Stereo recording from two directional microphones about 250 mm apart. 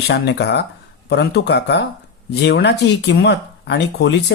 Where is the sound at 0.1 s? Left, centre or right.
Left.